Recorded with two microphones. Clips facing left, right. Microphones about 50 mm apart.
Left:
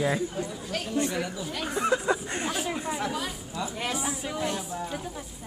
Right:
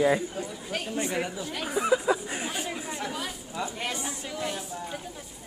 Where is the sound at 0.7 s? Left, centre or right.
Centre.